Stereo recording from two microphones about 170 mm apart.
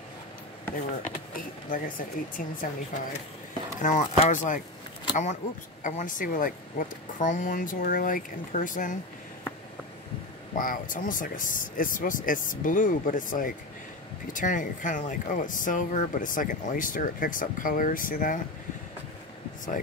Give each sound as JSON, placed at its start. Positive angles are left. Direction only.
{"t": 1.0, "sound": "speech", "side_deg": 55}
{"t": 10.6, "sound": "speech", "side_deg": 55}